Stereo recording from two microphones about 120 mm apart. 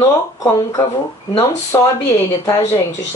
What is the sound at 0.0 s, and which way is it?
Speech, 25° left (ahead or behind).